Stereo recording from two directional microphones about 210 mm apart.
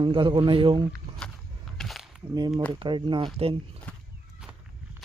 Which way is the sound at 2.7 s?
20° right (ahead or behind).